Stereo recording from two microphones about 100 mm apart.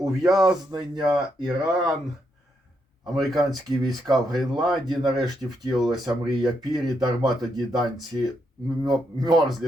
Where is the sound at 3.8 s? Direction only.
40° right (ahead or behind).